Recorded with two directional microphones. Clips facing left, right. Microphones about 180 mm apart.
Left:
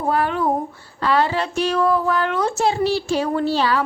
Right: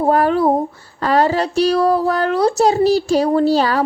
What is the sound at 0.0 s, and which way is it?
A woman's voice, 40° right (ahead or behind).